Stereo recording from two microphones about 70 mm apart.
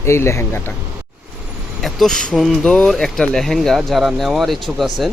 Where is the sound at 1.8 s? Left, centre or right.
Centre.